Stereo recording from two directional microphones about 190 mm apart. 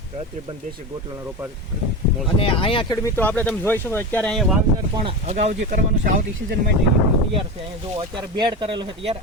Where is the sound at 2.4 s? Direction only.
30° left (ahead or behind).